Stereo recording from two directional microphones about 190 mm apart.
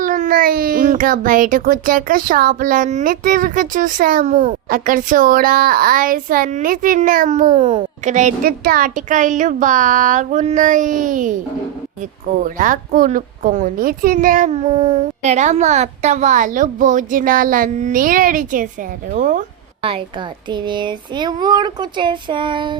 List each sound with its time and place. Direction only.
0.0 s a woman's voice: 45° right (ahead or behind)
12.5 s a woman's voice: 45° right (ahead or behind)
19.8 s speech: 30° right (ahead or behind)